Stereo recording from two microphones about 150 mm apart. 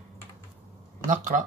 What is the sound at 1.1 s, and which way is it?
Speech, 60° right (ahead or behind).